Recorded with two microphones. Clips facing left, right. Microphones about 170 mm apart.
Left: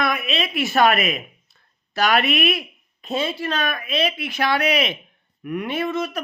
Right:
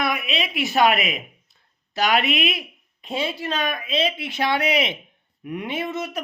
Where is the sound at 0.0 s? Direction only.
15° right (ahead or behind).